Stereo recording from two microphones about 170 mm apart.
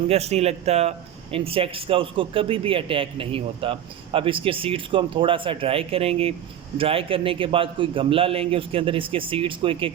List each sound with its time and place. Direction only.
0.1 s speech: 40° right (ahead or behind)